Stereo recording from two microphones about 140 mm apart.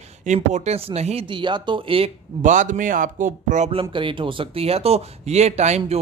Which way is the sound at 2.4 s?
65° right (ahead or behind).